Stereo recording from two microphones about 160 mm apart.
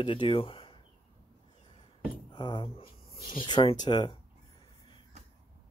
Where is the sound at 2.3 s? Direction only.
30° left (ahead or behind).